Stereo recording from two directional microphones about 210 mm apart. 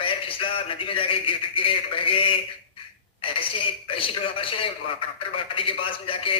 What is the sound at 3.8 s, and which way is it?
Speech, 25° left (ahead or behind).